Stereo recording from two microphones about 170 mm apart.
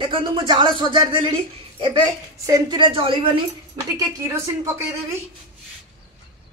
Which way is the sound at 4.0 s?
20° right (ahead or behind).